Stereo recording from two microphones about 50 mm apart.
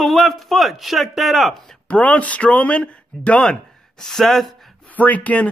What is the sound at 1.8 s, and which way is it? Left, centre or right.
Speech, left.